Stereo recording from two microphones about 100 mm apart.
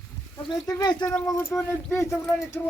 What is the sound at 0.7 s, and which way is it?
Speech, 45° left (ahead or behind).